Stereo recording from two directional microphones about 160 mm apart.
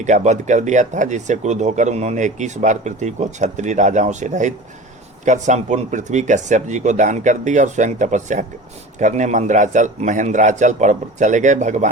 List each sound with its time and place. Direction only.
0.0 s speech: 50° right (ahead or behind)